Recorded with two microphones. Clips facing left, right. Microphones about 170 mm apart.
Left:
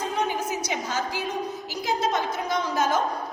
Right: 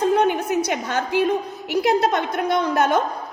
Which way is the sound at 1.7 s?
65° right (ahead or behind).